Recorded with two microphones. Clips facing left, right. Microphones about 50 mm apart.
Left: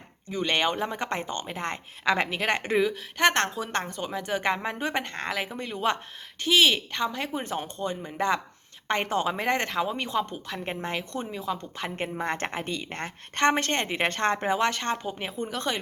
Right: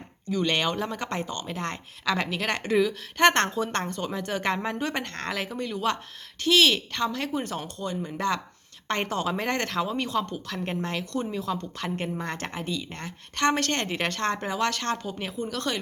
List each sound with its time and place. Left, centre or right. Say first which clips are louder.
0.3 s speech: even; left
3.2 s a woman's voice: right 3 dB; centre; by 13.5 s left
13.5 s speech: even; left